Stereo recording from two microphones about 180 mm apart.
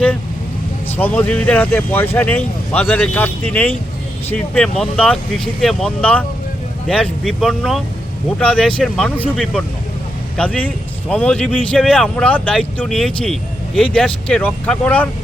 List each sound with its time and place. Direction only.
0.9 s speech: 10° left (ahead or behind)